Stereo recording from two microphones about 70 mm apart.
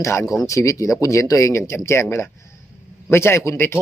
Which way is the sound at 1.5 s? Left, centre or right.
Left.